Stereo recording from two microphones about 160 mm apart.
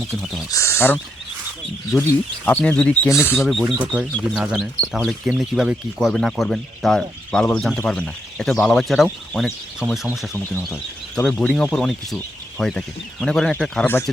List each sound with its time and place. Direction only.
0.1 s speech: centre (ahead or behind)
0.5 s speech: 15° left (ahead or behind)
3.8 s speech: 5° right (ahead or behind)
11.1 s speech: 5° left (ahead or behind)